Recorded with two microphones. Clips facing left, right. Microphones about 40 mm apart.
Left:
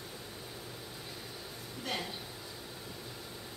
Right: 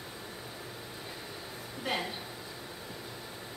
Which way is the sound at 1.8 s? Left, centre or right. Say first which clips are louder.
Right 4 dB; centre.